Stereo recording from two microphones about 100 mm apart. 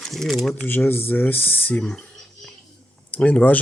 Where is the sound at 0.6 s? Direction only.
20° left (ahead or behind).